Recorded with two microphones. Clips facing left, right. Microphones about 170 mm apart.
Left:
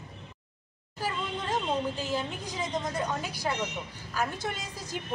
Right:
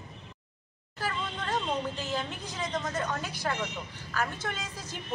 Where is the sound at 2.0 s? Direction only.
10° left (ahead or behind).